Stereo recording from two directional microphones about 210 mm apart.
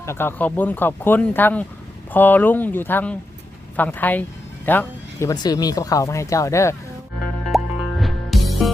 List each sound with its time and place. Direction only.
0.0 s speech: 10° left (ahead or behind)
5.3 s speech: 20° left (ahead or behind)
7.4 s music: centre (ahead or behind)